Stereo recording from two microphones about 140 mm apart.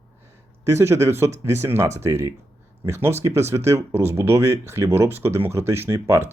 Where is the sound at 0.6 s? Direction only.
20° right (ahead or behind).